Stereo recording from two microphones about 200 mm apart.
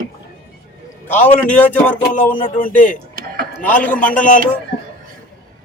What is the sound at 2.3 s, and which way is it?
Speech, 45° left (ahead or behind).